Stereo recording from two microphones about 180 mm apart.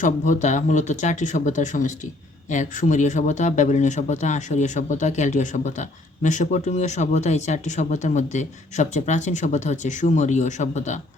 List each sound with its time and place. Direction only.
0.0 s speech: 40° left (ahead or behind)